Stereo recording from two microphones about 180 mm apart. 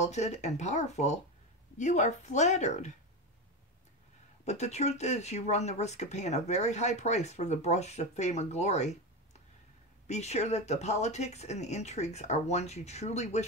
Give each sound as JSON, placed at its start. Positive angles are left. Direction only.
{"t": 0.0, "sound": "speech", "side_deg": 40}
{"t": 4.5, "sound": "speech", "side_deg": 40}